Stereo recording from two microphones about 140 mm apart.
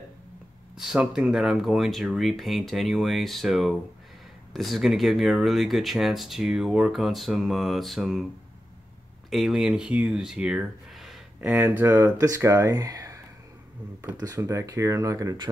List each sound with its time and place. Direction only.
0.7 s speech: 5° right (ahead or behind)
9.3 s speech: centre (ahead or behind)
11.4 s speech: 15° right (ahead or behind)
14.2 s speech: 25° right (ahead or behind)